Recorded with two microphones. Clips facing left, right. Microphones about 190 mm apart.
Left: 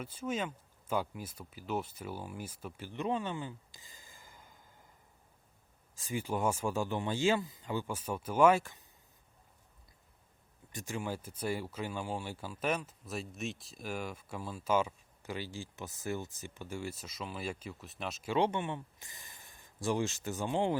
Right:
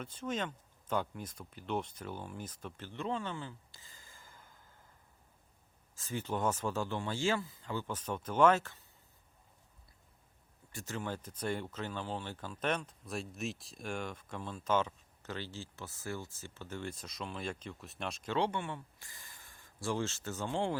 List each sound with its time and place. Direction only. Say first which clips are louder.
0.0 s speech: left 1 dB; 10° left (ahead or behind)
6.0 s speech: left 2 dB; 10° left (ahead or behind)
10.7 s speech: left 2 dB; 15° left (ahead or behind)
18.3 s speech: left 3 dB; 20° left (ahead or behind)